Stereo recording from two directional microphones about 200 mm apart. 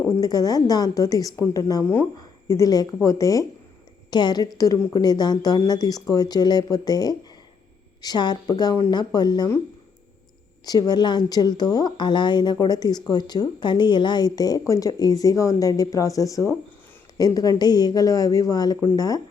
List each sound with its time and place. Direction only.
0.2 s a woman's voice: 20° left (ahead or behind)
10.7 s a woman's voice: 20° left (ahead or behind)